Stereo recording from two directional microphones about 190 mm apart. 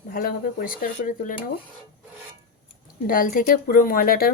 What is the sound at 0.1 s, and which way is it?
Speech, 50° left (ahead or behind).